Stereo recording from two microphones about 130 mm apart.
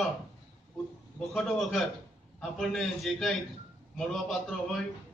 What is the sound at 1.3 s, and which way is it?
A man's voice, centre (ahead or behind).